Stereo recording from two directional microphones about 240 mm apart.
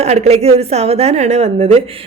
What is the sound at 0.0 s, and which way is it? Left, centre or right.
A woman's voice, right.